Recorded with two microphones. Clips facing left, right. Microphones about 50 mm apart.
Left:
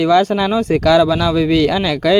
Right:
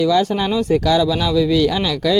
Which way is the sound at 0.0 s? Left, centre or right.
Left.